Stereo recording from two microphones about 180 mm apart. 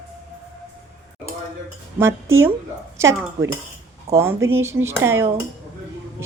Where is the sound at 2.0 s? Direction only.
15° right (ahead or behind).